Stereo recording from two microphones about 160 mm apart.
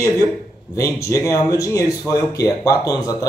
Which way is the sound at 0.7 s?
20° left (ahead or behind).